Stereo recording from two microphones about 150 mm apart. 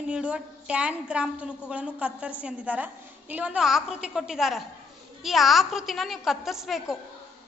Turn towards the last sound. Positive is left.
turn(degrees=0)  # may be behind; listen again after turning